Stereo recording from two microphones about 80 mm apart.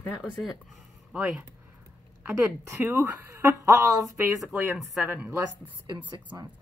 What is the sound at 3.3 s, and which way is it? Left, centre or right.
Speech, right.